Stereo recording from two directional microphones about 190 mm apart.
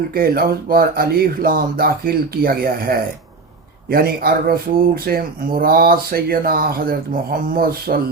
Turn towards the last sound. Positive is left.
turn(degrees=-50)  # may be behind; listen again after turning